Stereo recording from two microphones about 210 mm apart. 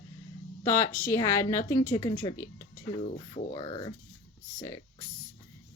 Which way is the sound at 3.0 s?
25° left (ahead or behind).